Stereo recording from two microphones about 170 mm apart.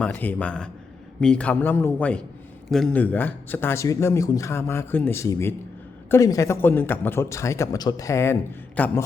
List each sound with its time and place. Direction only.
0.0 s a man's voice: 10° left (ahead or behind)